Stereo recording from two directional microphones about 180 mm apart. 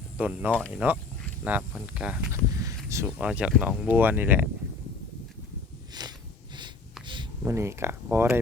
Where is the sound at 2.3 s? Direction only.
20° right (ahead or behind).